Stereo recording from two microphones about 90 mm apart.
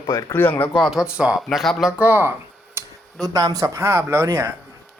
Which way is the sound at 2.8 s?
30° right (ahead or behind).